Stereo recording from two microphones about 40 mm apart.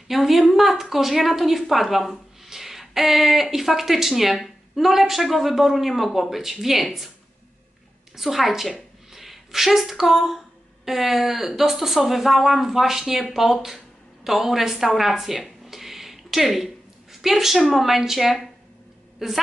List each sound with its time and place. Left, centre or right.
0.1 s a woman's voice: centre
8.2 s a woman's voice: centre
15.6 s a sound: centre
19.1 s a woman's voice: centre